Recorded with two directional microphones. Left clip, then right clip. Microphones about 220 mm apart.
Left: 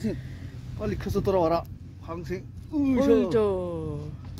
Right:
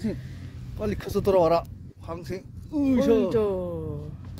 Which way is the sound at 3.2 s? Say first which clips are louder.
Even; centre (ahead or behind).